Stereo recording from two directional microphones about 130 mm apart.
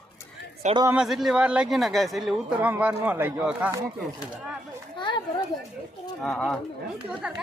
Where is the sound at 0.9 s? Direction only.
5° right (ahead or behind).